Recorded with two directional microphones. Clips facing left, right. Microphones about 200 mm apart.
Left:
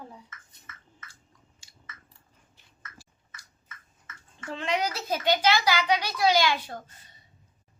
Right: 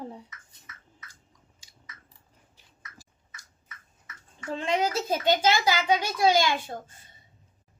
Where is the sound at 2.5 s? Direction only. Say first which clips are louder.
Left 1 dB; 40° right (ahead or behind).